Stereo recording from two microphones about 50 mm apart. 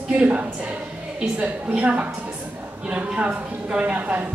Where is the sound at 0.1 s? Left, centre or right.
Right.